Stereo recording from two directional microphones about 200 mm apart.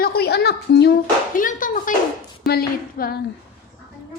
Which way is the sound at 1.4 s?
40° left (ahead or behind).